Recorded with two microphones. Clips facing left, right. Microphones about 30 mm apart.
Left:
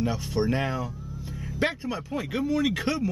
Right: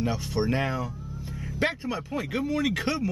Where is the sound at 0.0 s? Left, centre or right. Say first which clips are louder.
Left 1 dB; centre.